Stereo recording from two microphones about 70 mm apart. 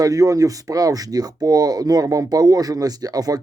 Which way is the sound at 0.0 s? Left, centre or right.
Right.